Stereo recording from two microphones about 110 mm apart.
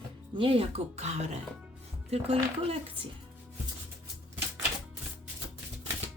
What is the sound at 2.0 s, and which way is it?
Speech, 70° right (ahead or behind).